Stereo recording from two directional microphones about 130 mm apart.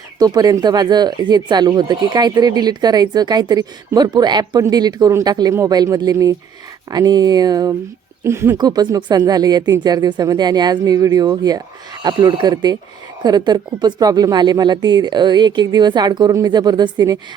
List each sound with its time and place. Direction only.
0.2 s speech: 30° right (ahead or behind)
8.5 s speech: 30° right (ahead or behind)